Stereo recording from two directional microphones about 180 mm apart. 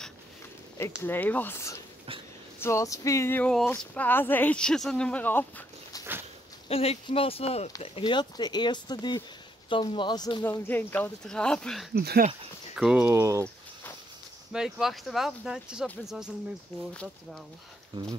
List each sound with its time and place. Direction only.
0.7 s speech: 15° left (ahead or behind)
5.9 s a sound: 20° left (ahead or behind)
6.7 s speech: 35° left (ahead or behind)
10.7 s speech: 10° left (ahead or behind)
11.9 s speech: 60° right (ahead or behind)
12.7 s speech: 5° right (ahead or behind)
14.5 s speech: 5° right (ahead or behind)